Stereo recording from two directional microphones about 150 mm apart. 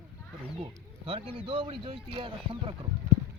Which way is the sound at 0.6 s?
35° right (ahead or behind).